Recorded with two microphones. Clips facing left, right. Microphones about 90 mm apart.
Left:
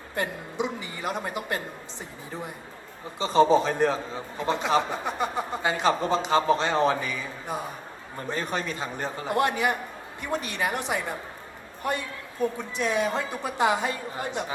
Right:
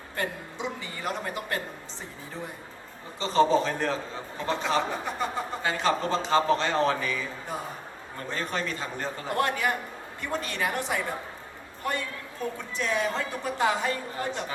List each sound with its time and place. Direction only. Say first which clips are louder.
0.2 s a woman's voice: left 3 dB; 15° left (ahead or behind)
3.2 s a man's voice: left 2 dB; 15° left (ahead or behind)